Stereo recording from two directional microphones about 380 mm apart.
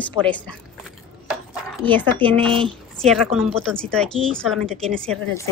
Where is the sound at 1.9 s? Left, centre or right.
Centre.